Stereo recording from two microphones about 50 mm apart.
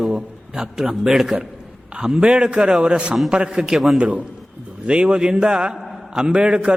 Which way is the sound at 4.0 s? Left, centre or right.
Right.